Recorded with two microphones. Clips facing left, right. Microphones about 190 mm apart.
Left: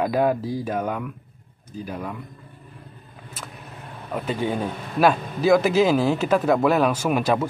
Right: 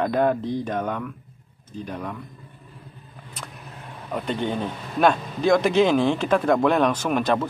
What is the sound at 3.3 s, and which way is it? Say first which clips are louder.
Speech: left 1 dB; centre (ahead or behind).